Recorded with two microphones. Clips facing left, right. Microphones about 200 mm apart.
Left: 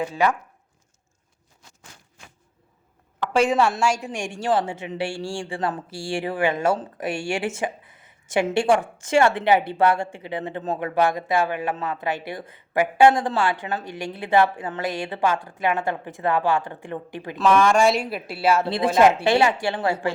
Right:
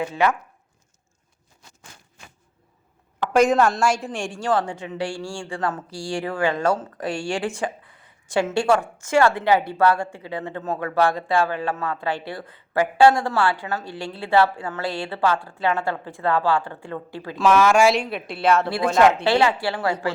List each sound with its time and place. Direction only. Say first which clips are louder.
3.3 s speech: right 2 dB; 10° left (ahead or behind)
17.3 s a woman's voice: right 1 dB; 5° right (ahead or behind)
18.7 s speech: even; 20° left (ahead or behind)